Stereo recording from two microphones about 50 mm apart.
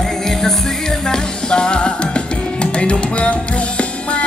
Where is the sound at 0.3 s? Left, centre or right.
Centre.